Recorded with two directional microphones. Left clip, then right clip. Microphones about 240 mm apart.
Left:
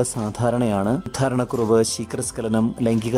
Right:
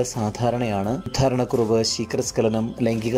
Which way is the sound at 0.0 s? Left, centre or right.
Centre.